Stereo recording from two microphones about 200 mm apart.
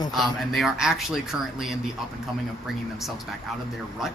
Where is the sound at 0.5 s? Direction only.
Centre (ahead or behind).